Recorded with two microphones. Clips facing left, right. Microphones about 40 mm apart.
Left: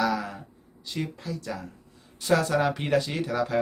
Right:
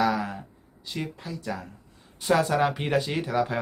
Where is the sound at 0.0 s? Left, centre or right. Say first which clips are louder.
Right 2 dB; centre.